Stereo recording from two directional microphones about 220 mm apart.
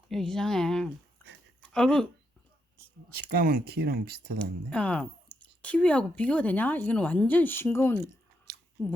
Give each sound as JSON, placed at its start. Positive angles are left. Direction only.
{"t": 0.1, "sound": "speech", "side_deg": 0}
{"t": 3.2, "sound": "speech", "side_deg": -45}
{"t": 4.7, "sound": "speech", "side_deg": 5}
{"t": 8.5, "sound": "chewing", "side_deg": -50}